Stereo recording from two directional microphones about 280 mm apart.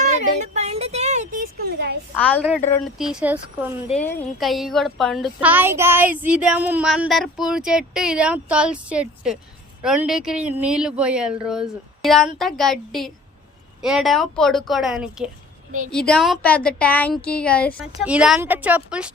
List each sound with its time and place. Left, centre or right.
0.0 s a sound: right
2.1 s a woman's voice: centre
3.9 s speech: centre